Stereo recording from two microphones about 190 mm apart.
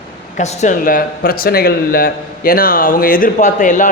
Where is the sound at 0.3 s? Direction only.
35° left (ahead or behind).